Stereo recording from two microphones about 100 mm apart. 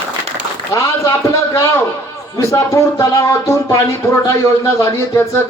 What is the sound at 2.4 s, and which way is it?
A man's voice, 30° left (ahead or behind).